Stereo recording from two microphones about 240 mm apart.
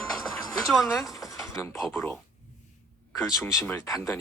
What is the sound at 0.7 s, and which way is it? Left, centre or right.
Speech, centre.